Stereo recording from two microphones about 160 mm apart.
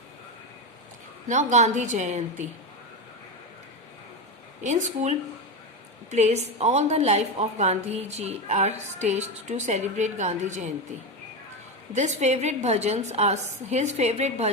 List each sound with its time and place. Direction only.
1.3 s a woman's voice: 50° right (ahead or behind)
4.6 s a woman's voice: 50° right (ahead or behind)
11.9 s a woman's voice: 45° right (ahead or behind)